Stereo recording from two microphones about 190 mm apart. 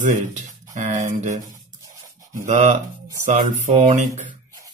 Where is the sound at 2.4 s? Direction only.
40° right (ahead or behind).